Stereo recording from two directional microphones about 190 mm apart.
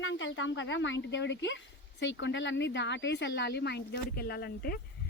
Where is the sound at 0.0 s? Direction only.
85° left.